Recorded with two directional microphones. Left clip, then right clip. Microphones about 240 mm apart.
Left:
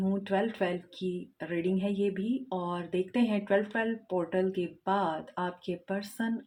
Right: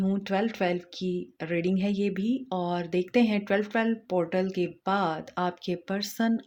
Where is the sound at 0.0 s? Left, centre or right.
Right.